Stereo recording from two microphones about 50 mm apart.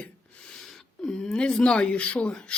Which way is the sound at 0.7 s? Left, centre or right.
Centre.